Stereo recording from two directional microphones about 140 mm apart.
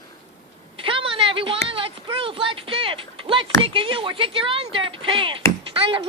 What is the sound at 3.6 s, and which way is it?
Speech, 40° right (ahead or behind).